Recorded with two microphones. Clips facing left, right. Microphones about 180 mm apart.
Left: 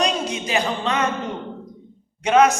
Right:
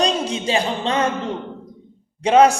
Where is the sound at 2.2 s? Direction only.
30° right (ahead or behind).